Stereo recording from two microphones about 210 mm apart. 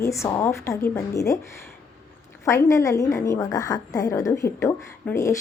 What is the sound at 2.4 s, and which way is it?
A woman's voice, 15° left (ahead or behind).